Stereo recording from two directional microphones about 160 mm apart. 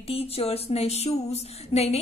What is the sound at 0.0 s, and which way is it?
Speech, 40° left (ahead or behind).